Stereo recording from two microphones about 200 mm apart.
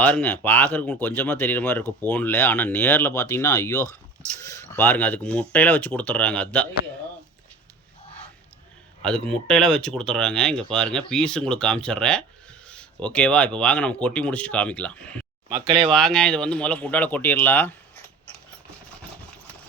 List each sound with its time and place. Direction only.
0.0 s speech: 5° left (ahead or behind)
9.0 s speech: 5° left (ahead or behind)
15.4 s speech: 25° right (ahead or behind)
15.9 s speech: 5° left (ahead or behind)